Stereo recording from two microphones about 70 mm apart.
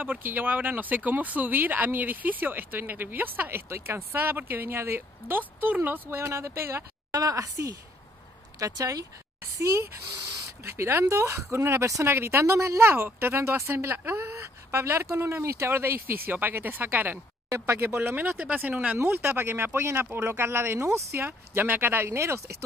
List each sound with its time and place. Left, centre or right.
0.0 s speech: right
7.2 s a woman's voice: right
9.6 s a woman's voice: right; by 18.9 s centre
19.0 s speech: right